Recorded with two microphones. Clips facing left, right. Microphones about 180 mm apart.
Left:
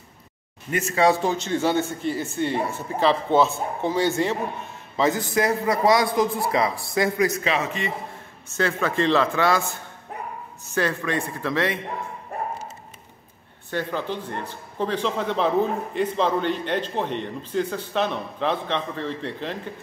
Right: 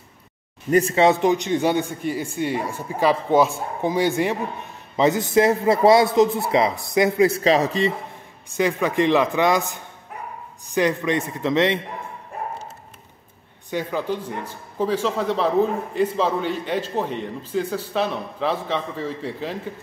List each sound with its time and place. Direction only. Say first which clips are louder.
0.7 s a man's voice: right 4 dB; 35° right (ahead or behind)
8.5 s a man's voice: right 3 dB; 15° right (ahead or behind)
13.7 s a man's voice: right 2 dB; 10° right (ahead or behind)